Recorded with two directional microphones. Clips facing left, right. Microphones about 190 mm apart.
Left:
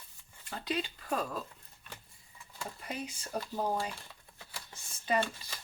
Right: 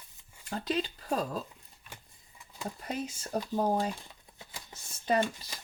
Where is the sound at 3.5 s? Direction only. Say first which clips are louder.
Right 5 dB; 45° right (ahead or behind).